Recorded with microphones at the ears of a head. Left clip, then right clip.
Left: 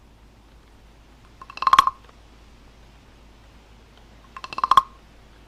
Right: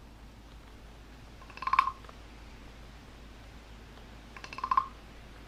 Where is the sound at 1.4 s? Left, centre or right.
Left.